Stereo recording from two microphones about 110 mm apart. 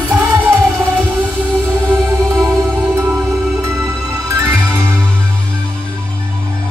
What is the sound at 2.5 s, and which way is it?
Music, 5° left (ahead or behind).